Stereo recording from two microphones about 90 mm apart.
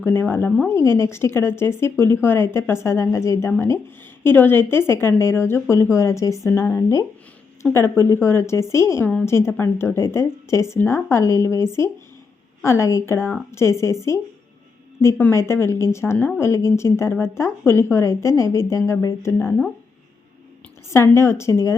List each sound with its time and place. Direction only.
0.0 s a woman's voice: 25° left (ahead or behind)
15.3 s a woman's voice: 30° left (ahead or behind)
20.9 s speech: 30° left (ahead or behind)